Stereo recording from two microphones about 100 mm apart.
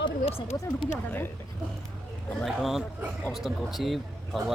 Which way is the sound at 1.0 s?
15° left (ahead or behind).